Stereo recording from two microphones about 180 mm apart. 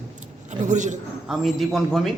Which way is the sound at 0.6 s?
40° right (ahead or behind).